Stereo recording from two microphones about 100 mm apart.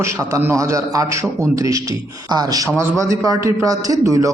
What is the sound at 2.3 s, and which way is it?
A man's voice, 40° right (ahead or behind).